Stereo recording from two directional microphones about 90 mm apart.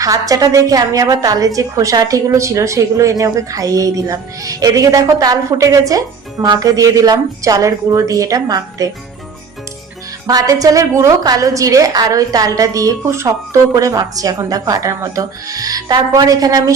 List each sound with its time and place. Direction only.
0.0 s a woman's voice: 40° right (ahead or behind)
10.2 s a woman's voice: 40° right (ahead or behind)